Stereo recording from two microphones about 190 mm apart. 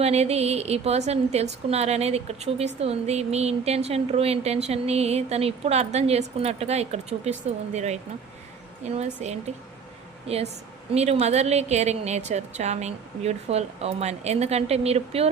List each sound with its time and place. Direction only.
0.0 s a woman's voice: 35° right (ahead or behind)